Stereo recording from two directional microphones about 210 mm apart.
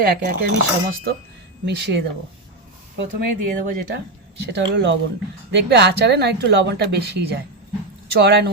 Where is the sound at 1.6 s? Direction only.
55° right (ahead or behind).